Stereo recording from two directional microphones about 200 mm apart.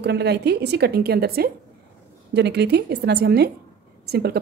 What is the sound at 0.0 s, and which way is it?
A woman's voice, 55° right (ahead or behind).